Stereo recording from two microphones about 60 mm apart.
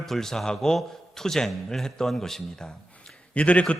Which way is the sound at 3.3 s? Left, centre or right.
Left.